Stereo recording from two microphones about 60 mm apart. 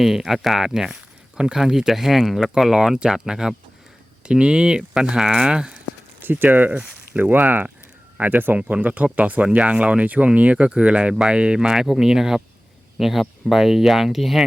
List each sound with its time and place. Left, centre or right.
0.0 s speech: centre
6.2 s speech: right
7.2 s speech: right; by 14.4 s centre